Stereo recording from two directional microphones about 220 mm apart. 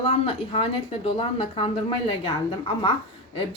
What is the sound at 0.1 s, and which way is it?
A woman's voice, 25° left (ahead or behind).